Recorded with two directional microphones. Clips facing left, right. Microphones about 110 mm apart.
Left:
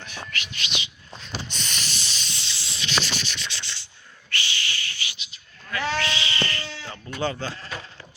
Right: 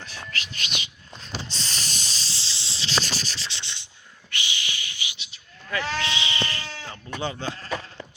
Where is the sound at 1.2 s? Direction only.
30° right (ahead or behind).